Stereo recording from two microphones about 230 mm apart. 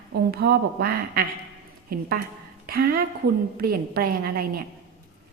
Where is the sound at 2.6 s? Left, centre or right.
Right.